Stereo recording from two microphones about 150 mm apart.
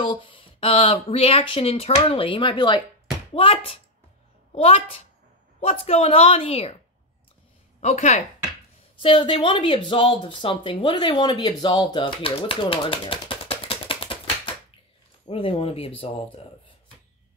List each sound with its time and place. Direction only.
0.0 s speech: 35° left (ahead or behind)
7.8 s speech: 50° left (ahead or behind)
9.0 s speech: 35° left (ahead or behind)
12.2 s typewriter: 40° left (ahead or behind)
15.2 s speech: 40° left (ahead or behind)